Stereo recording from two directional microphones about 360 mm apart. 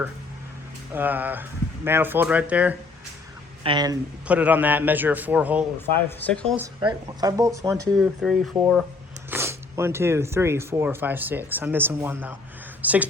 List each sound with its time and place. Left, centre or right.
0.9 s a man's voice: centre
6.7 s a man's voice: centre